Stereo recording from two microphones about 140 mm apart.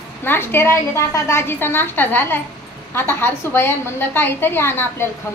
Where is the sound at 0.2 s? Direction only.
15° left (ahead or behind).